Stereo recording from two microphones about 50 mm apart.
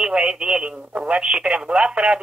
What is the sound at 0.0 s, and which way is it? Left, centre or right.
Speech, centre.